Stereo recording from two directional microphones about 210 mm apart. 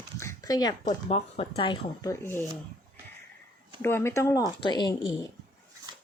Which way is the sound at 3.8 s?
10° left (ahead or behind).